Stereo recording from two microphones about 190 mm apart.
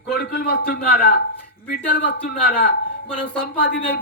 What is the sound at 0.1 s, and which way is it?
A man's voice, 55° left (ahead or behind).